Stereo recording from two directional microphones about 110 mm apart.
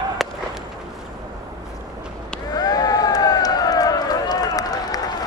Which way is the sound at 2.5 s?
35° left (ahead or behind).